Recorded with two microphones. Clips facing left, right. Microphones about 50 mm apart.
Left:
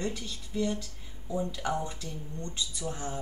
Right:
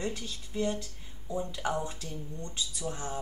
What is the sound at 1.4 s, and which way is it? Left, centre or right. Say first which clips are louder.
Speech: even; centre.